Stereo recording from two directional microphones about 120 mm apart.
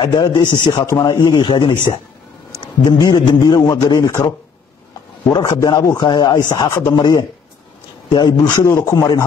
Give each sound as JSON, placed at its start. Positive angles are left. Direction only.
{"t": 0.0, "sound": "a man's voice", "side_deg": 40}
{"t": 5.3, "sound": "a man's voice", "side_deg": 35}